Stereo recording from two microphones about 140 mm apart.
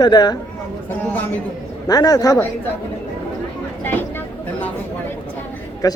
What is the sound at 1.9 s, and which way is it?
Speech, 25° left (ahead or behind).